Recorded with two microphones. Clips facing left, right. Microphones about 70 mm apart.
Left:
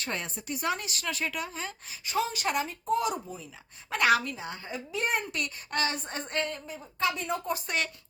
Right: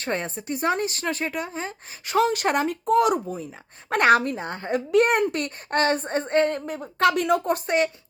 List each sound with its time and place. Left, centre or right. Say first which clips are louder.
0.0 s speech: right 7 dB; right
2.0 s speech: right 8 dB; right
5.4 s speech: right 7 dB; right
6.5 s speech: right 10 dB; right